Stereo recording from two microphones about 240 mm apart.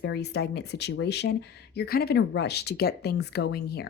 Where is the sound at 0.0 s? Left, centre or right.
Left.